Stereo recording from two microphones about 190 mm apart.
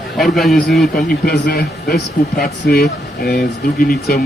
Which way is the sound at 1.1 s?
55° left (ahead or behind).